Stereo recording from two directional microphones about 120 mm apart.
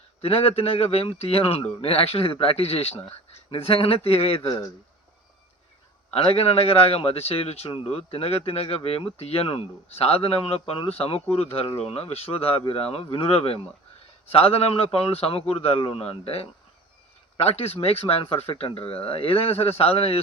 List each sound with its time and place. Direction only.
0.2 s a man's voice: 55° left (ahead or behind)
6.1 s a man's voice: 55° left (ahead or behind)